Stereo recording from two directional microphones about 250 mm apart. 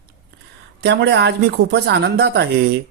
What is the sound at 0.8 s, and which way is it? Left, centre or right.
Speech, right.